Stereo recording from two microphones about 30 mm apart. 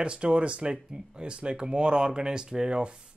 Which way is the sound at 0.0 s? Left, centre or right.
Right.